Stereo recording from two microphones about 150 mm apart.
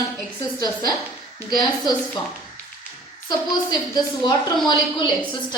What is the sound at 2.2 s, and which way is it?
Speech, 25° left (ahead or behind).